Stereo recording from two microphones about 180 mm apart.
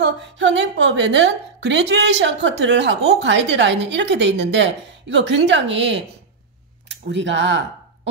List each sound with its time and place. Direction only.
0.0 s a woman's voice: 90° right
7.1 s speech: 90° right